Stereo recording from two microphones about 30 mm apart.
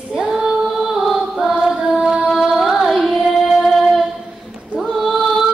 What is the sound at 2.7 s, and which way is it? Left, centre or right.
Carnatic music, centre.